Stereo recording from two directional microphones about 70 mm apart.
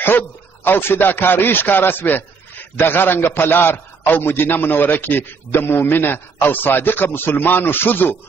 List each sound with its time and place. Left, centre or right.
0.0 s a man's voice: left